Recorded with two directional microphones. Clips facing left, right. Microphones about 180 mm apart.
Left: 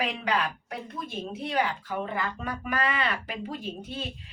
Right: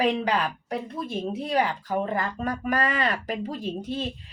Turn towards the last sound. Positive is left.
turn(degrees=-35)  # may be behind; listen again after turning